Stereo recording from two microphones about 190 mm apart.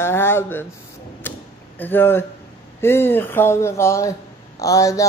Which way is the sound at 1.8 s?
10° left (ahead or behind).